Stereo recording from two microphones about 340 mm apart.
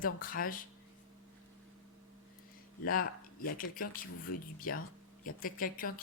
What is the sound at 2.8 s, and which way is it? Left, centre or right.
Speech, left.